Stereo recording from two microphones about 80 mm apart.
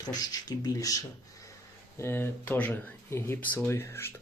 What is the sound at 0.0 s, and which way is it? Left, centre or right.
Speech, left.